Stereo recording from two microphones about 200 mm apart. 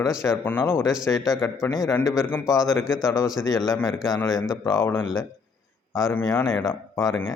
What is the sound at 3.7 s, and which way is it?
Speech, 15° left (ahead or behind).